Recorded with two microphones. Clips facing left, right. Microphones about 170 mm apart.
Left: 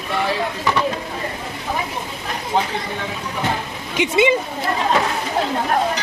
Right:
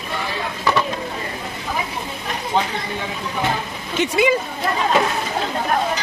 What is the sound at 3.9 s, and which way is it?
Speech, 20° left (ahead or behind).